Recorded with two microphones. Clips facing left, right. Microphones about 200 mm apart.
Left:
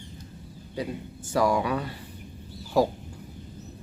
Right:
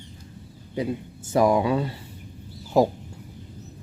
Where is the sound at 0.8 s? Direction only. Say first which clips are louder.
Right 5 dB; 20° right (ahead or behind).